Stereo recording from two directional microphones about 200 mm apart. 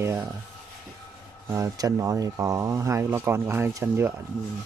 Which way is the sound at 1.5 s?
15° right (ahead or behind).